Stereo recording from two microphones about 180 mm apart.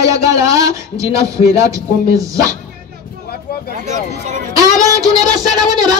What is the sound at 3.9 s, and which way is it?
Speech, 40° right (ahead or behind).